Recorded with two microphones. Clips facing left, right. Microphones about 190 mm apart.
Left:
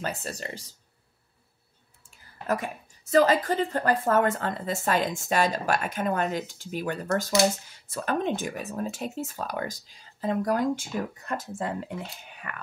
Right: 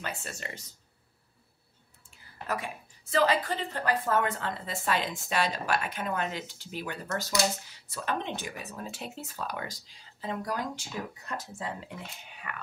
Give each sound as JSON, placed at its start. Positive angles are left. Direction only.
{"t": 0.0, "sound": "speech", "side_deg": 40}
{"t": 2.0, "sound": "a woman's voice", "side_deg": 45}